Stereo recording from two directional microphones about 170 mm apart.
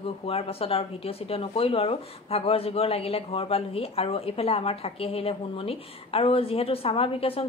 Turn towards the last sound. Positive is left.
turn(degrees=35)  # may be behind; listen again after turning